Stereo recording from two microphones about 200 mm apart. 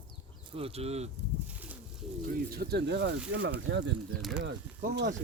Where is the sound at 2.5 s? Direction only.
50° right (ahead or behind).